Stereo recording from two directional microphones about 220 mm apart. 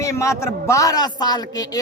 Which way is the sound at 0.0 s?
15° left (ahead or behind).